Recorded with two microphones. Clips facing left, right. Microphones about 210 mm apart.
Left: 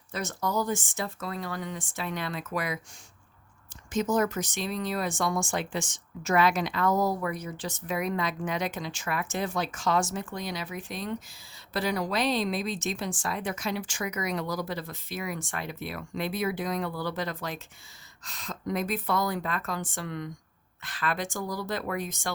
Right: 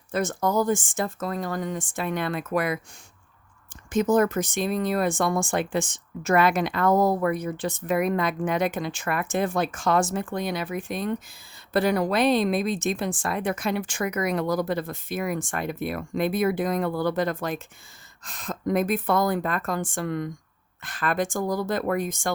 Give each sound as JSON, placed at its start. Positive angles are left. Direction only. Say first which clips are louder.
{"t": 0.1, "sound": "speech", "louder": "right 6 dB", "side_deg": -50}
{"t": 3.9, "sound": "speech", "louder": "right 5 dB", "side_deg": -55}